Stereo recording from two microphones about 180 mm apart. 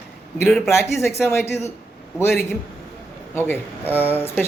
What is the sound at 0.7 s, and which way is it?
Speech, 15° left (ahead or behind).